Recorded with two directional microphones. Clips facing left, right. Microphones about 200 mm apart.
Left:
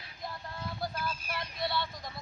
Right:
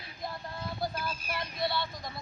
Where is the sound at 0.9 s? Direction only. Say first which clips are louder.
Right 1 dB; 10° right (ahead or behind).